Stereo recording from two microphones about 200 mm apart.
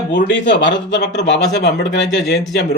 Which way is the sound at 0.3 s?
65° left (ahead or behind).